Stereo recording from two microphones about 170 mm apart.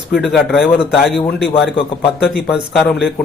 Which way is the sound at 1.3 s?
80° left.